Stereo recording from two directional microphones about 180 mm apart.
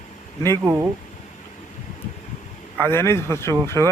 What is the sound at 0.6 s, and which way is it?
Speech, 15° right (ahead or behind).